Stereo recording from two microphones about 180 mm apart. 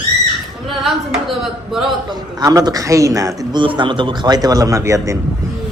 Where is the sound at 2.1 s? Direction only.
20° right (ahead or behind).